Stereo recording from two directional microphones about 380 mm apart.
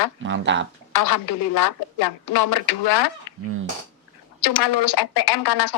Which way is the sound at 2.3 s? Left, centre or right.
Left.